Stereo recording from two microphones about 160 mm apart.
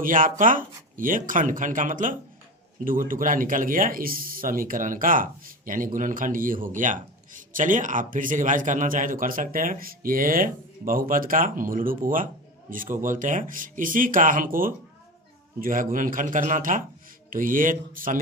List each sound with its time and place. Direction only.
0.0 s speech: 55° right (ahead or behind)